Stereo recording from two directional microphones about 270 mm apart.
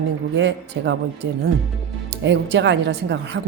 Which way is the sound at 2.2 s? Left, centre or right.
Right.